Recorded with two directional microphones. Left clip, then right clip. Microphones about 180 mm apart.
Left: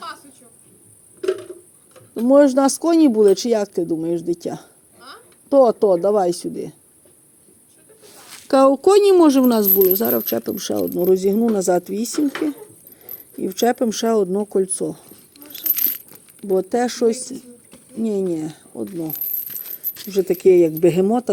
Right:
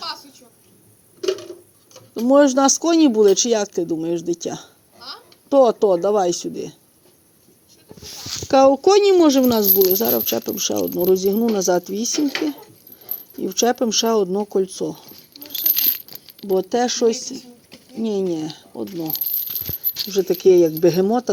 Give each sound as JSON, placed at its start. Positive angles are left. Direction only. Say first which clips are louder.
{"t": 1.2, "sound": "a sound", "louder": "even", "side_deg": 10}
{"t": 1.9, "sound": "speech", "louder": "left 1 dB", "side_deg": 15}
{"t": 8.4, "sound": "speech", "louder": "even", "side_deg": 25}
{"t": 12.2, "sound": "speech", "louder": "left 2 dB", "side_deg": 5}
{"t": 13.4, "sound": "speech", "louder": "even", "side_deg": 20}
{"t": 15.5, "sound": "a sound", "louder": "right 5 dB", "side_deg": 10}
{"t": 16.4, "sound": "speech", "louder": "even", "side_deg": 15}
{"t": 18.9, "sound": "speech", "louder": "even", "side_deg": 5}
{"t": 20.1, "sound": "speech", "louder": "even", "side_deg": 25}